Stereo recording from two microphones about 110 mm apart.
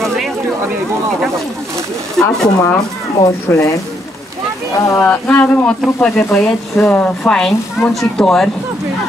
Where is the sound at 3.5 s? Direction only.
20° left (ahead or behind).